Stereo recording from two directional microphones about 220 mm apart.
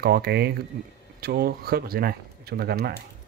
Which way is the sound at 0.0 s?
45° right (ahead or behind).